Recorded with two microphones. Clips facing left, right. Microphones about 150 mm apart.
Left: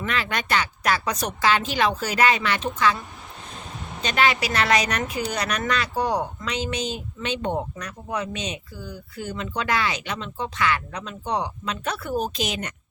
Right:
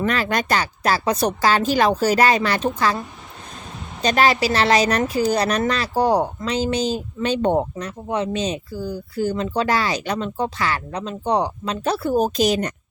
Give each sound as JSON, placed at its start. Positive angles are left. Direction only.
{"t": 0.0, "sound": "speech", "side_deg": -40}
{"t": 4.0, "sound": "speech", "side_deg": -40}
{"t": 7.9, "sound": "speech", "side_deg": -25}